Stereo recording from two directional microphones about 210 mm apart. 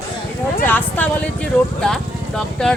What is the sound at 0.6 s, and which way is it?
Speech, 10° left (ahead or behind).